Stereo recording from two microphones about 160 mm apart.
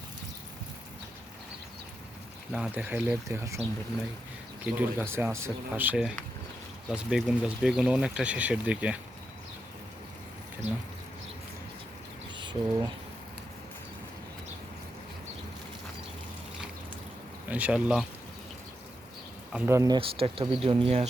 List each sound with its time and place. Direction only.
2.5 s speech: 10° right (ahead or behind)
12.4 s speech: 30° right (ahead or behind)
17.5 s speech: 10° right (ahead or behind)
19.5 s speech: 15° right (ahead or behind)
20.0 s speech: 35° right (ahead or behind)